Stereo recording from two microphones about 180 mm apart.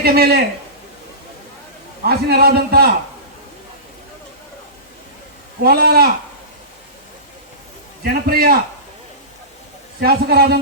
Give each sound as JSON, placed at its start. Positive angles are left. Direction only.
{"t": 0.0, "sound": "a man's voice", "side_deg": -60}
{"t": 2.0, "sound": "a man's voice", "side_deg": -60}
{"t": 5.6, "sound": "a man's voice", "side_deg": -60}
{"t": 8.0, "sound": "a man's voice", "side_deg": -55}
{"t": 10.0, "sound": "a man's voice", "side_deg": -60}